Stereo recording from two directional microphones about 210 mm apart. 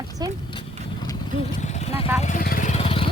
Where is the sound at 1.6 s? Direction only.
30° left (ahead or behind).